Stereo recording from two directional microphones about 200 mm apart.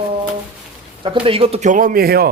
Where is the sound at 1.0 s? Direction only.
25° right (ahead or behind); by 2.3 s 50° right (ahead or behind).